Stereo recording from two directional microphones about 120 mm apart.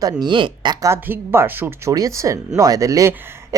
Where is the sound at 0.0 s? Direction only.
35° right (ahead or behind).